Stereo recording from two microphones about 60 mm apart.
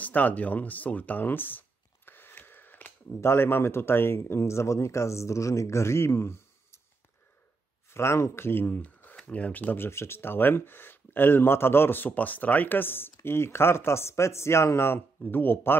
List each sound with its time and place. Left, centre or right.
0.0 s a sound: left
3.2 s speech: left
4.2 s speech: left
7.9 s speech: left
8.6 s speech: left
9.8 s speech: left
15.2 s speech: left